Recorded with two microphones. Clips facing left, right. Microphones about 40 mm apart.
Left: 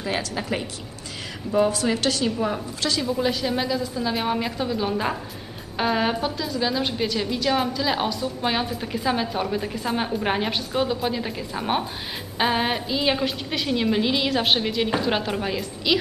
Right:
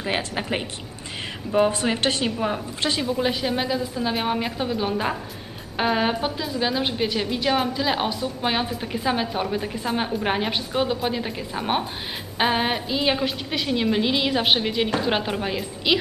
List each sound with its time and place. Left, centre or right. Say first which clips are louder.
0.0 s a woman's voice: right 1 dB; right; by 16.0 s centre